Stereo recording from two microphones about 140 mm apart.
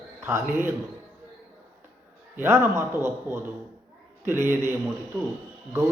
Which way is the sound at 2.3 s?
15° right (ahead or behind).